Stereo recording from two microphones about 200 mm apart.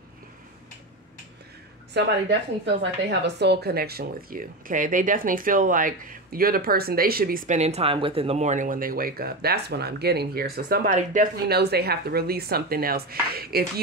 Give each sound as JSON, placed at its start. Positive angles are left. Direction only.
{"t": 2.0, "sound": "a woman's voice", "side_deg": -60}